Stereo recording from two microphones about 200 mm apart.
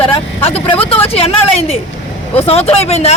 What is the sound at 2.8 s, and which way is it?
Speech, 30° left (ahead or behind).